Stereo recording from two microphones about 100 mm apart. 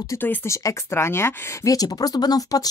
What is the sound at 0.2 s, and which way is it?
Speech, 20° left (ahead or behind).